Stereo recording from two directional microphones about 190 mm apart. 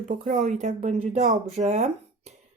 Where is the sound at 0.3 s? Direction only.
40° right (ahead or behind).